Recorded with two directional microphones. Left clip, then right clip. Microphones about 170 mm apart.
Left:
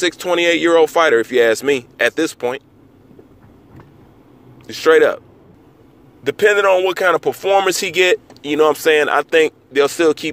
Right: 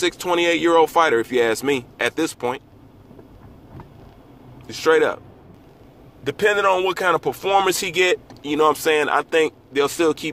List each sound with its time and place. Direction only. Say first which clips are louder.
0.0 s speech: left 4 dB; 30° left (ahead or behind)
4.6 s speech: left 5 dB; 30° left (ahead or behind)
6.2 s speech: left 5 dB; 35° left (ahead or behind)